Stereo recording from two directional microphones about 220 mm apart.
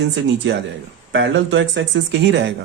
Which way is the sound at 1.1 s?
55° right (ahead or behind).